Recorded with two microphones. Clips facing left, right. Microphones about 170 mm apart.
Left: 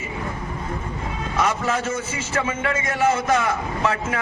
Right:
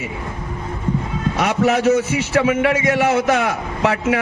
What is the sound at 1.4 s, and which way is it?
A man's voice, 70° right (ahead or behind).